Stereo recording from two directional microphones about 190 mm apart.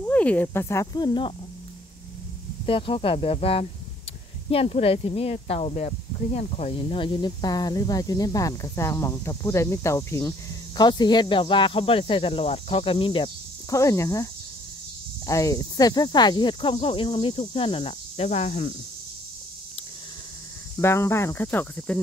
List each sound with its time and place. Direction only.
0.0 s speech: 10° left (ahead or behind); by 1.3 s 25° left (ahead or behind)
2.6 s speech: 30° left (ahead or behind)
20.8 s speech: 15° left (ahead or behind)